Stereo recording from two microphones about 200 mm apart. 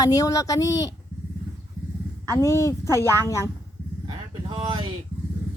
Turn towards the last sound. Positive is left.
turn(degrees=-20)  # may be behind; listen again after turning